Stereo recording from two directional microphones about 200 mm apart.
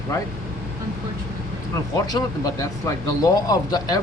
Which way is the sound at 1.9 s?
15° left (ahead or behind).